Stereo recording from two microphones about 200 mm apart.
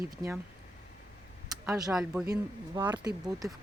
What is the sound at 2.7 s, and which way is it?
Speech, 20° right (ahead or behind).